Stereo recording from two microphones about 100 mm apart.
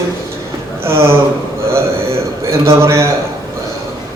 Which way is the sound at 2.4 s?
30° right (ahead or behind).